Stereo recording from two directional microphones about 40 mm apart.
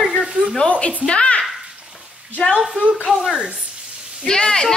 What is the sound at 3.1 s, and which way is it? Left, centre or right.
Speech, right.